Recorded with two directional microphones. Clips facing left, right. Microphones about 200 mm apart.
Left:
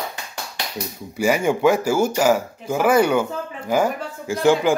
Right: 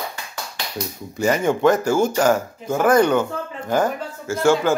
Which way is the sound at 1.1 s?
10° left (ahead or behind).